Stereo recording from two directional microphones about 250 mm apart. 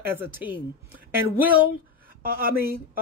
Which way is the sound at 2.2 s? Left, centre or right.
Right.